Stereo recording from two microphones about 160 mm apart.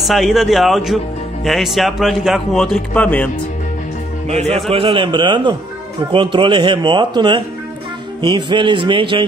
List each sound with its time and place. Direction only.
0.1 s speech: centre (ahead or behind)
4.3 s speech: 40° right (ahead or behind)